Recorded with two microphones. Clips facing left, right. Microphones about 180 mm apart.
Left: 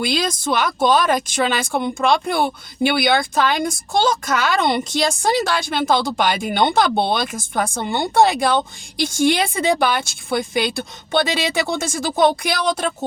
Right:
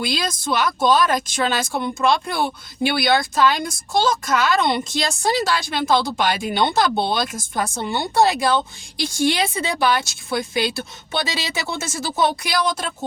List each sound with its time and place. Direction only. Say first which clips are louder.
0.0 s a woman's voice: left 3 dB; 55° left (ahead or behind)